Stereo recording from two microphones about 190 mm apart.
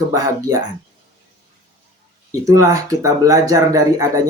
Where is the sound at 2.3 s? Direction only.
15° right (ahead or behind).